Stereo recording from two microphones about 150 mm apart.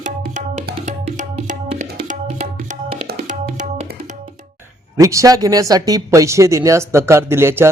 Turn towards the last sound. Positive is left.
turn(degrees=-15)  # may be behind; listen again after turning